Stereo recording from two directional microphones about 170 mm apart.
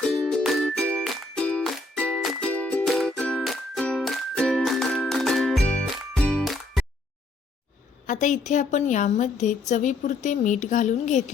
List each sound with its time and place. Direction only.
0.1 s music: 5° left (ahead or behind)
8.0 s a woman's voice: 45° left (ahead or behind)